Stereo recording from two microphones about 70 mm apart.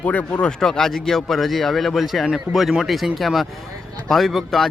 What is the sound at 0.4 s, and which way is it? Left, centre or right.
Speech, centre.